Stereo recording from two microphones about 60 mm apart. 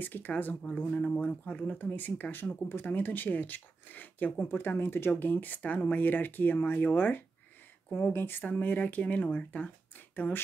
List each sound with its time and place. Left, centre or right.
0.0 s speech: left